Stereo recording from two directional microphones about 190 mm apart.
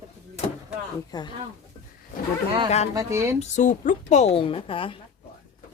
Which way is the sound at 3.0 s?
15° right (ahead or behind).